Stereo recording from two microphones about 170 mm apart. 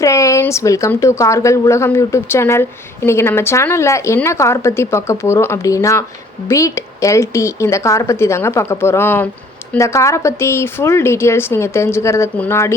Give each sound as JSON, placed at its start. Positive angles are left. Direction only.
{"t": 0.0, "sound": "speech", "side_deg": 20}